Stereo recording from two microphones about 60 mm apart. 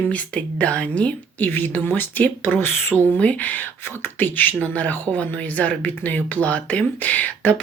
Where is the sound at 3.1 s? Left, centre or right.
Left.